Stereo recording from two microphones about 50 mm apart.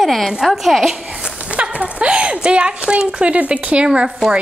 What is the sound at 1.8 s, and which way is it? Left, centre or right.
Speech, right.